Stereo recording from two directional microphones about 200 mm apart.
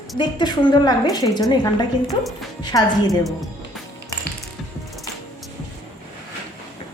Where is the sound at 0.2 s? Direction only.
20° left (ahead or behind).